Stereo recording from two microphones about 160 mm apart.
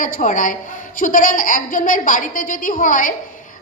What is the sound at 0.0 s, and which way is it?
A woman's voice, 60° left (ahead or behind).